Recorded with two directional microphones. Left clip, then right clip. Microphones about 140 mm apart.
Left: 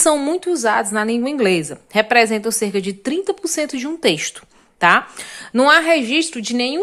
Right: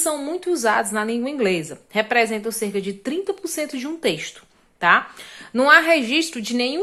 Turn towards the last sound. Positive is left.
turn(degrees=25)  # may be behind; listen again after turning